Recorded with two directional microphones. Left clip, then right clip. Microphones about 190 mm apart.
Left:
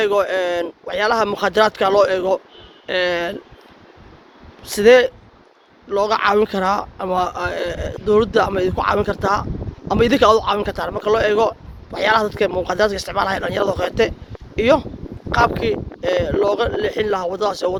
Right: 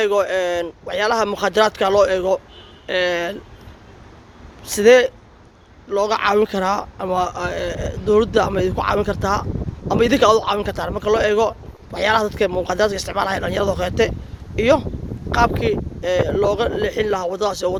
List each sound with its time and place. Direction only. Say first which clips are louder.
0.0 s a man's voice: even; 5° left (ahead or behind)
4.6 s a man's voice: left 1 dB; 5° left (ahead or behind)